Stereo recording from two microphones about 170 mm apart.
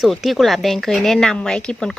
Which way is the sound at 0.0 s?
Centre (ahead or behind).